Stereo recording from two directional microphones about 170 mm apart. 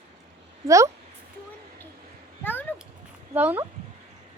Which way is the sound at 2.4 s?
10° left (ahead or behind).